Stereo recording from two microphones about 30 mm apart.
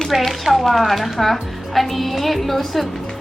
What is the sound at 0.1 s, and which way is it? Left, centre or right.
Speech, centre.